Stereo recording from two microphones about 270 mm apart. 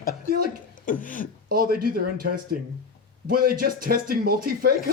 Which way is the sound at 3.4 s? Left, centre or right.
Right.